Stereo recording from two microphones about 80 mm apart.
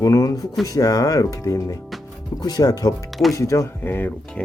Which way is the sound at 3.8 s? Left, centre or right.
Left.